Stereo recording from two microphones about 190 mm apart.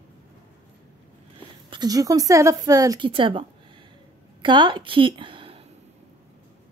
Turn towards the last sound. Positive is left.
turn(degrees=-25)  # may be behind; listen again after turning